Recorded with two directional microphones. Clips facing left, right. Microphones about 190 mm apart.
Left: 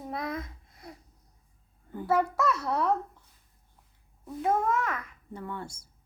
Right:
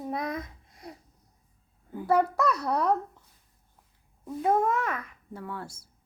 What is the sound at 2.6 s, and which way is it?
Child singing, 15° right (ahead or behind).